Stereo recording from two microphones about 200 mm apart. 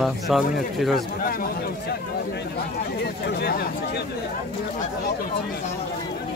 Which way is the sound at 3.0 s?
55° left (ahead or behind).